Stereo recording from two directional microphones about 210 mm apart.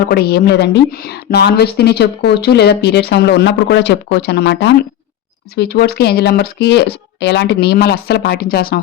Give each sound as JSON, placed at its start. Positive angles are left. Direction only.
{"t": 0.1, "sound": "a woman's voice", "side_deg": 50}